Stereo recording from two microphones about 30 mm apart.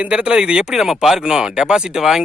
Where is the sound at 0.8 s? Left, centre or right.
Centre.